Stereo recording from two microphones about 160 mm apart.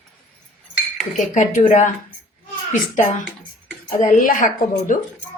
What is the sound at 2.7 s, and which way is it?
Speech, 50° left (ahead or behind).